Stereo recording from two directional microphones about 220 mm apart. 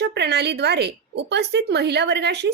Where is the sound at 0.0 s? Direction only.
50° right (ahead or behind).